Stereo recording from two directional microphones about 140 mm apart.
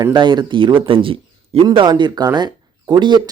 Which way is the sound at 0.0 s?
35° right (ahead or behind).